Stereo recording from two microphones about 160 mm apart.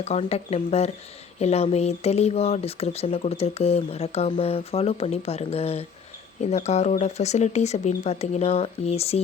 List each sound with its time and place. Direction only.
0.0 s speech: 40° left (ahead or behind)